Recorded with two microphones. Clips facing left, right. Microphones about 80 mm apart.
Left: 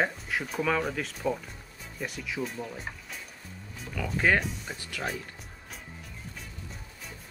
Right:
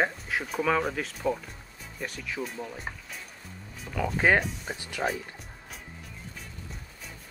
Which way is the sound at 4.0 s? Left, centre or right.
Centre.